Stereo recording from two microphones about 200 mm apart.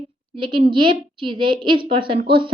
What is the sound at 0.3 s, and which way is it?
A woman's voice, 25° right (ahead or behind).